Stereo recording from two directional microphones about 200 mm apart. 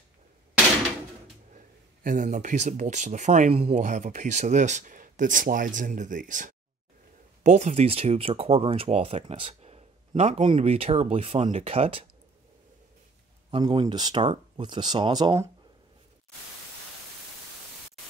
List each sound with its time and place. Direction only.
2.0 s speech: 40° right (ahead or behind)
13.5 s speech: 25° right (ahead or behind)